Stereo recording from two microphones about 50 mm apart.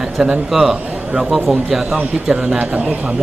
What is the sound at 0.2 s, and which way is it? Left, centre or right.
A man's voice, centre.